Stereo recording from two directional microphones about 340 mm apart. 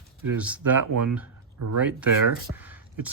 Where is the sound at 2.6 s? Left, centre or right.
Centre.